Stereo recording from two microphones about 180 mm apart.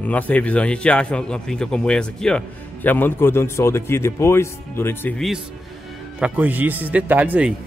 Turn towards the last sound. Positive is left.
turn(degrees=-10)  # may be behind; listen again after turning